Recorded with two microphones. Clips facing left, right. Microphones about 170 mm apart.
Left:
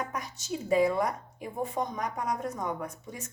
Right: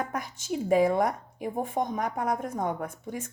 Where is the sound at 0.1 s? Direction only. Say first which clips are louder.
Right 3 dB; 50° right (ahead or behind).